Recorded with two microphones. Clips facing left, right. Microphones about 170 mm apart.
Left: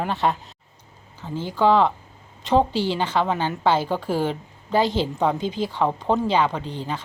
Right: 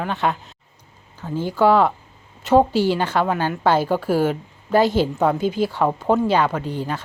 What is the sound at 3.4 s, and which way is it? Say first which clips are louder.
Speech: right 2 dB; 20° left (ahead or behind).